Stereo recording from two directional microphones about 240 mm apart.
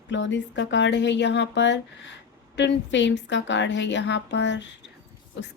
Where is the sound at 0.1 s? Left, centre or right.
Left.